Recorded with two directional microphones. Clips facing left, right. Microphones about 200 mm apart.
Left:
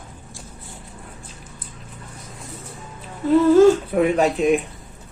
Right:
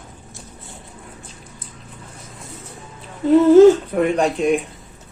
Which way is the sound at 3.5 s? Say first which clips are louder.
Right 4 dB; 20° right (ahead or behind).